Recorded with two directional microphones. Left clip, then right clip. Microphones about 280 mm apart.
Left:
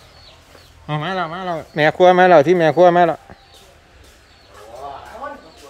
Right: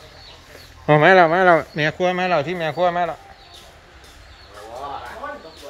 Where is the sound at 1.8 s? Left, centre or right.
Centre; by 3.1 s left.